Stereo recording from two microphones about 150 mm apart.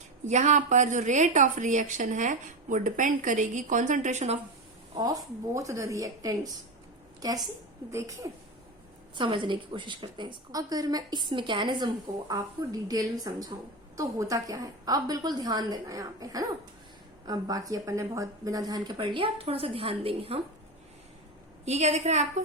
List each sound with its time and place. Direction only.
0.3 s a woman's voice: 55° right (ahead or behind)
4.9 s a woman's voice: 25° right (ahead or behind)
9.1 s a woman's voice: 30° right (ahead or behind)
21.6 s a woman's voice: 45° right (ahead or behind)